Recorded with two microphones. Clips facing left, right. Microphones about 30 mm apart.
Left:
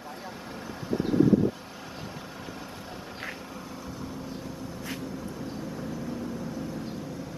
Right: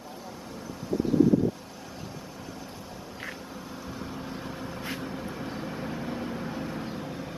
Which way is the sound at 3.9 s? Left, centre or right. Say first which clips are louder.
Right 2 dB; right.